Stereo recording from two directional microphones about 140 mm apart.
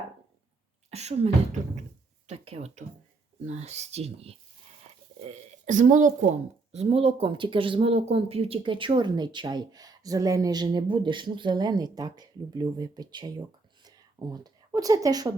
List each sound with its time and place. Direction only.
0.9 s speech: 50° right (ahead or behind)
5.3 s speech: 60° right (ahead or behind); by 13.4 s 30° right (ahead or behind)
13.8 s a sound: 30° right (ahead or behind)